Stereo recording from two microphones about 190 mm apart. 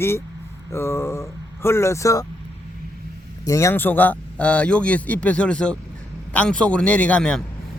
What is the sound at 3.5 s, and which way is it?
Speech, 15° left (ahead or behind).